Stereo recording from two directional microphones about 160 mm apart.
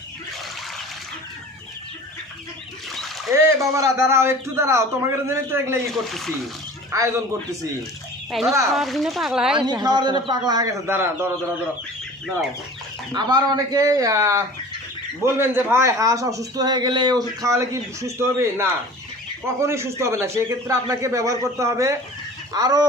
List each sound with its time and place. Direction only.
3.3 s a man's voice: 15° right (ahead or behind)
6.1 s speech: centre (ahead or behind)
6.9 s a man's voice: 20° right (ahead or behind)
8.3 s speech: centre (ahead or behind)
9.6 s a man's voice: 25° right (ahead or behind)
13.1 s a man's voice: 25° right (ahead or behind)